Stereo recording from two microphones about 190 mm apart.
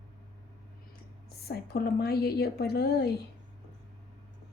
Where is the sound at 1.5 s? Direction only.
55° left (ahead or behind).